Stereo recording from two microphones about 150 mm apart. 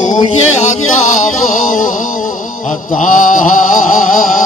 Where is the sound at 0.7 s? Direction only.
55° left (ahead or behind).